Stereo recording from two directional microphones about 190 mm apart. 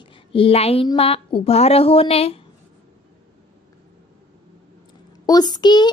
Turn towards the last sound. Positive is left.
turn(degrees=25)  # may be behind; listen again after turning